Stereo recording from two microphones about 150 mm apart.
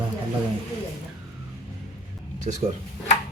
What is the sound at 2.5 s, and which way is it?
Speech, 50° right (ahead or behind).